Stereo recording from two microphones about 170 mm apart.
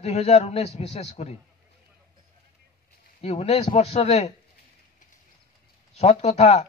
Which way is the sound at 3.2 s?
40° left (ahead or behind).